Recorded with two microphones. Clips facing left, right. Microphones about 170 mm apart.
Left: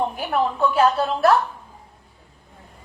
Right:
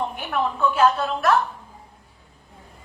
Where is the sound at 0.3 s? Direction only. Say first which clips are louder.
Left 1 dB; 35° left (ahead or behind).